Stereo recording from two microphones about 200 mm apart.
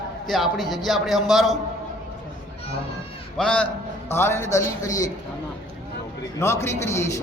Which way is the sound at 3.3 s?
5° left (ahead or behind).